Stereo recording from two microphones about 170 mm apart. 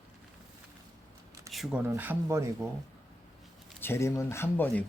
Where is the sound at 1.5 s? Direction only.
Centre (ahead or behind).